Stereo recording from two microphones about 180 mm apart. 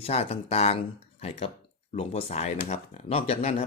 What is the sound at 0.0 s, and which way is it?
Speech, 35° left (ahead or behind).